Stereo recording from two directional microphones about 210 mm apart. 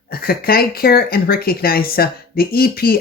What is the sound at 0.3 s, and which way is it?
Speech, 45° left (ahead or behind).